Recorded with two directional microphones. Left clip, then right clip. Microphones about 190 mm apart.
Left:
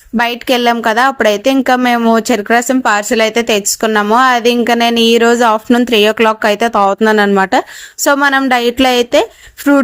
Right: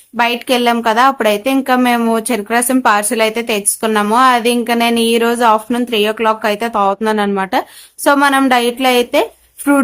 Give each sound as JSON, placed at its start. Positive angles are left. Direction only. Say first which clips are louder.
{"t": 0.2, "sound": "speech", "louder": "left 1 dB", "side_deg": 35}